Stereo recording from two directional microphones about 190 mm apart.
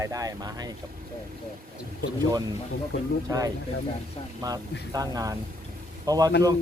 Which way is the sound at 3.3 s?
15° right (ahead or behind).